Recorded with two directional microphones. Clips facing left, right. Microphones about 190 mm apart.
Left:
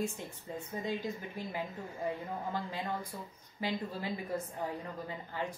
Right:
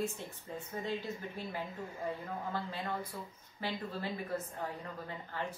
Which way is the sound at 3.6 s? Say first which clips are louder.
Left 2 dB; 15° left (ahead or behind).